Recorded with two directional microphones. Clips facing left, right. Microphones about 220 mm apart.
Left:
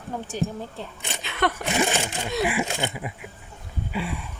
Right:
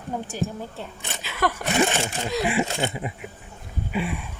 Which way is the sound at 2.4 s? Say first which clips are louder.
Right 2 dB; 25° right (ahead or behind).